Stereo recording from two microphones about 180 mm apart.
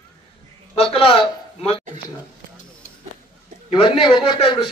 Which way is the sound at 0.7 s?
30° left (ahead or behind).